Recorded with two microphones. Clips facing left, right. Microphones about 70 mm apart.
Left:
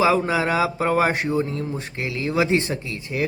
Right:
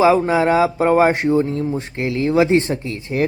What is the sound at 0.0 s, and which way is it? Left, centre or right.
Speech, right.